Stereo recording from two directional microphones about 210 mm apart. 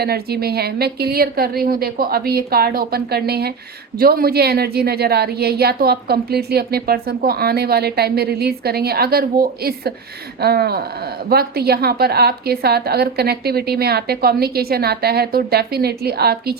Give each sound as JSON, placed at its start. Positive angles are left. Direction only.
{"t": 0.0, "sound": "a woman's voice", "side_deg": -50}